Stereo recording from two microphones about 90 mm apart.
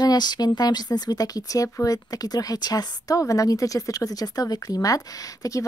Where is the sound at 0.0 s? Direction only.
50° left (ahead or behind).